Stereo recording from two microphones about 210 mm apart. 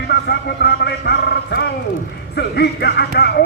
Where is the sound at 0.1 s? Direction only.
50° left (ahead or behind).